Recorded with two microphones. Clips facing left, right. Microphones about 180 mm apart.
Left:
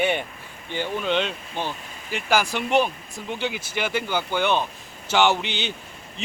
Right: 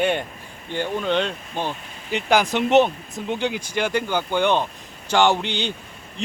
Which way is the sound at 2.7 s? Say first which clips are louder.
Right 5 dB; 20° right (ahead or behind).